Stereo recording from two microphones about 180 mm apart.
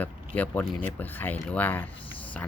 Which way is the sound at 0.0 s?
10° left (ahead or behind).